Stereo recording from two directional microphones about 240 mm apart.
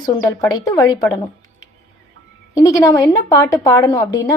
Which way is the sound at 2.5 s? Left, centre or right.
Centre.